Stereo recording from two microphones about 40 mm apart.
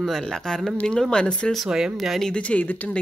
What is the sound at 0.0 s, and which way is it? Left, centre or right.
Speech, centre.